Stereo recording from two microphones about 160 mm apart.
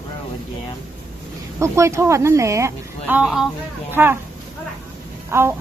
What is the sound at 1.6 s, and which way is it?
A woman's voice, 15° right (ahead or behind).